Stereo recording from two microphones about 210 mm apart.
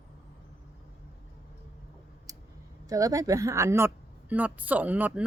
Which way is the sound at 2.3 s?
15° right (ahead or behind).